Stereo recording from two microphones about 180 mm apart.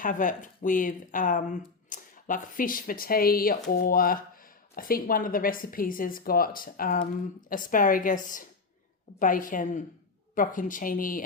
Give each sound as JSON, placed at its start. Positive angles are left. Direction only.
{"t": 0.0, "sound": "speech", "side_deg": 45}